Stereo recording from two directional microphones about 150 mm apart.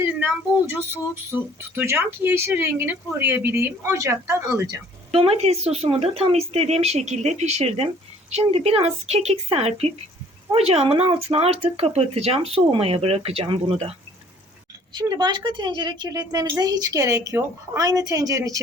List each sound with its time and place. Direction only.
0.0 s speech: 15° right (ahead or behind)
5.1 s speech: 40° right (ahead or behind)
14.9 s a woman's voice: 30° right (ahead or behind)